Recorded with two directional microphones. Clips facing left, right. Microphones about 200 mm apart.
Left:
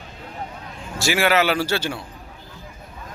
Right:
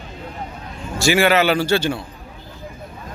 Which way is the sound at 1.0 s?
5° left (ahead or behind).